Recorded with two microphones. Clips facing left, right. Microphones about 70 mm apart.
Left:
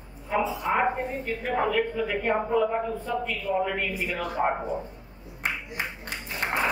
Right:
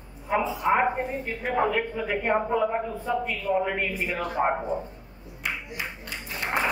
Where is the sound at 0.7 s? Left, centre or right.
Centre.